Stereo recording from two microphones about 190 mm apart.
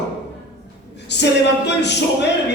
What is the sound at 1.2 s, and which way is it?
Speech, 65° left (ahead or behind).